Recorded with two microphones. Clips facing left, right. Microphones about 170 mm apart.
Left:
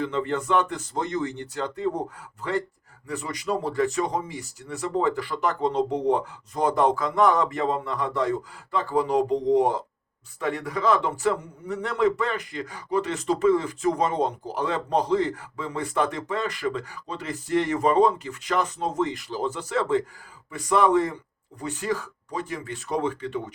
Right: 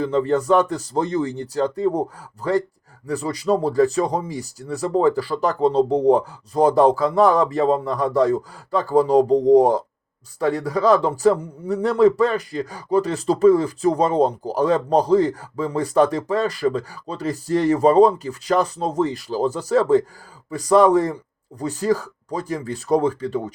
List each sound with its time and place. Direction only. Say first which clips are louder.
0.0 s a man's voice: right 7 dB; 35° right (ahead or behind)